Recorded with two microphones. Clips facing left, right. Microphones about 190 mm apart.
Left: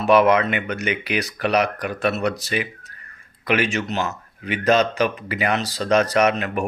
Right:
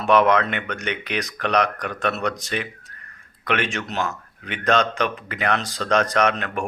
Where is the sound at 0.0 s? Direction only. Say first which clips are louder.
Left 2 dB; 5° left (ahead or behind).